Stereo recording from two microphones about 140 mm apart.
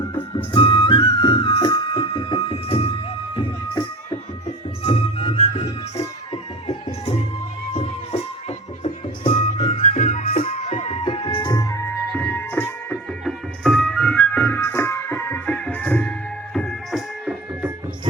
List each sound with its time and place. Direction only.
0.5 s music: 35° left (ahead or behind); by 10.4 s 70° left (ahead or behind)
10.4 s music: 50° left (ahead or behind); by 13.0 s 15° left (ahead or behind)
13.2 s music: 5° left (ahead or behind)
16.6 s music: centre (ahead or behind)